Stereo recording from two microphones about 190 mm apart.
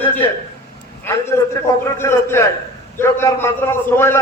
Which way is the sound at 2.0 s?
15° left (ahead or behind).